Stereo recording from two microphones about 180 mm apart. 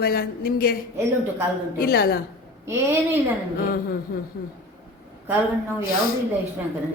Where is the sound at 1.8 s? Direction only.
60° left (ahead or behind).